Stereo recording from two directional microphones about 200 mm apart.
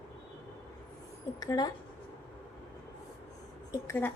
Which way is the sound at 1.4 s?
20° left (ahead or behind).